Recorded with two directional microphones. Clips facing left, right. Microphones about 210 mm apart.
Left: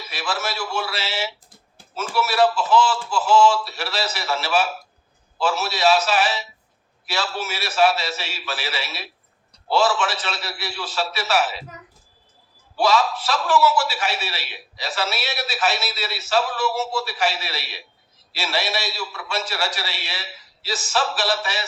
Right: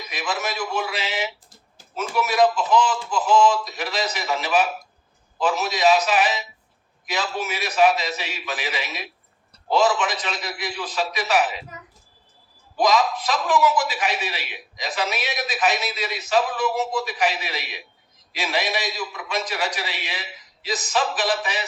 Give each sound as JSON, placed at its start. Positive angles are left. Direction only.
{"t": 0.0, "sound": "a man's voice", "side_deg": -15}
{"t": 12.7, "sound": "a man's voice", "side_deg": -15}